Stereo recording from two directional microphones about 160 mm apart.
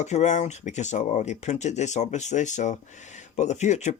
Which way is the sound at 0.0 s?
45° left (ahead or behind).